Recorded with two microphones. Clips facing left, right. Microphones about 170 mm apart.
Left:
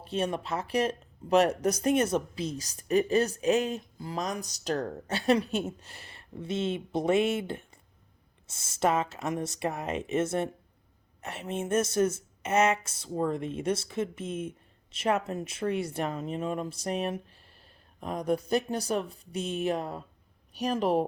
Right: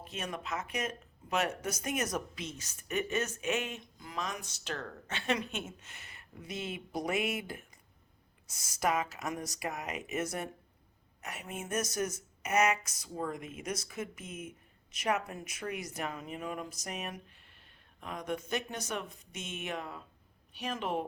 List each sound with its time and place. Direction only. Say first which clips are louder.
0.0 s speech: left 9 dB; 30° left (ahead or behind)